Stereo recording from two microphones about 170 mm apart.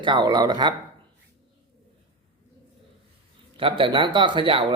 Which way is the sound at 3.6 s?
30° right (ahead or behind).